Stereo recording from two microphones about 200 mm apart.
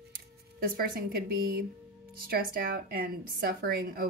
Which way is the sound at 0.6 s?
50° right (ahead or behind).